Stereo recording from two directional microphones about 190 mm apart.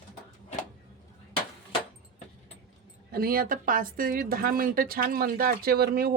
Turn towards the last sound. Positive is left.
turn(degrees=-55)  # may be behind; listen again after turning